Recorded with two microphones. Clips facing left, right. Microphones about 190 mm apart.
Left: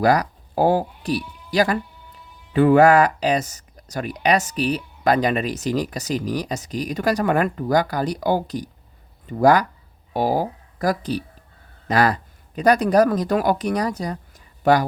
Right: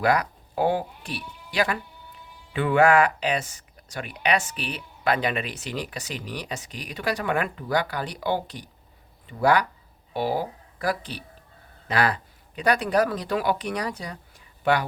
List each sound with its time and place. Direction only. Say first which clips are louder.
0.0 s speech: left 5 dB; 35° left (ahead or behind)